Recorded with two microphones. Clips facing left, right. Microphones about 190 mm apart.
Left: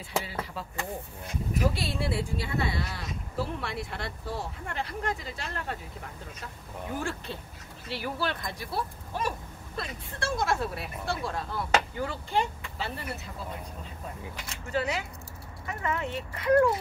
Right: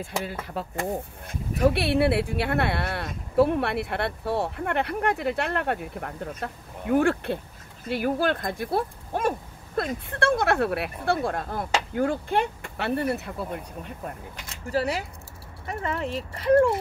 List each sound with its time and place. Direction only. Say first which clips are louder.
0.2 s speech: right 5 dB; 50° right (ahead or behind)
7.9 s speech: right 8 dB; 50° right (ahead or behind); by 11.1 s 65° right (ahead or behind)
11.1 s speech: right 5 dB; 50° right (ahead or behind)
14.7 s speech: right 4 dB; 35° right (ahead or behind)